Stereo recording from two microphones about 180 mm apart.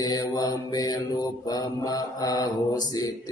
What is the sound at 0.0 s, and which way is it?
Speech, 20° left (ahead or behind).